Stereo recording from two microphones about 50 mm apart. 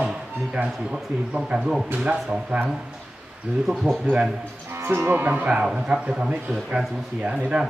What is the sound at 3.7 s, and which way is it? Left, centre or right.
Speech, centre.